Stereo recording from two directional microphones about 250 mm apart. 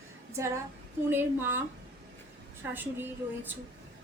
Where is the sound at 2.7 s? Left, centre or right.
Centre.